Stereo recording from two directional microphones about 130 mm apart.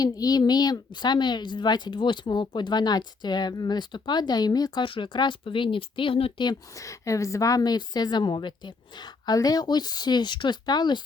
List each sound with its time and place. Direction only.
0.0 s speech: 30° left (ahead or behind)